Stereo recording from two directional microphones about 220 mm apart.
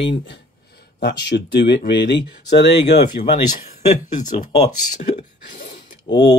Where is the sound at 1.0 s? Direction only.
50° left (ahead or behind).